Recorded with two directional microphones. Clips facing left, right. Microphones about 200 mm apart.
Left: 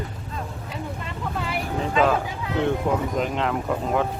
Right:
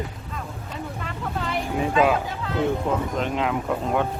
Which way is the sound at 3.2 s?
Centre (ahead or behind).